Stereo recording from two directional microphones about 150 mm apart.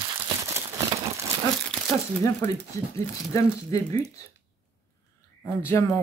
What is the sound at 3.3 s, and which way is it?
Speech, 20° left (ahead or behind).